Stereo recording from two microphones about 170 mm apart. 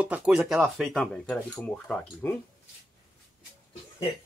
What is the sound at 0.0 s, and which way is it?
Speech, 5° right (ahead or behind).